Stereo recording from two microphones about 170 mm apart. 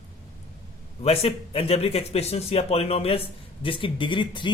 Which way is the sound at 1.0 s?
35° left (ahead or behind).